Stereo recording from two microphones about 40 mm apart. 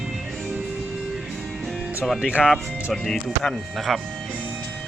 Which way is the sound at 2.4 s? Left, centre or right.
Centre.